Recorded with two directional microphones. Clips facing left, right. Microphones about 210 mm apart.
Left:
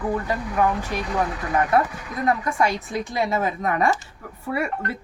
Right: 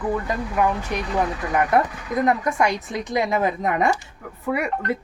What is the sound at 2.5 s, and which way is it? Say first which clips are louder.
A woman's voice: right 1 dB; 20° right (ahead or behind).